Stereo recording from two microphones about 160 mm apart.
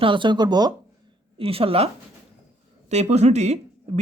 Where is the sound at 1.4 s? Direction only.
35° right (ahead or behind).